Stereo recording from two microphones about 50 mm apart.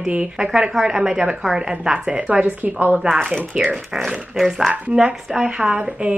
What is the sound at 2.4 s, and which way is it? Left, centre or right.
Speech, right.